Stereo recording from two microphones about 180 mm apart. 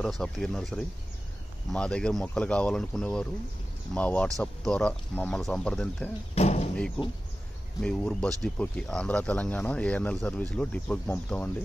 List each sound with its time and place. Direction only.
0.2 s speech: 5° left (ahead or behind)
6.3 s a sound: 35° left (ahead or behind)
7.0 s speech: 5° left (ahead or behind)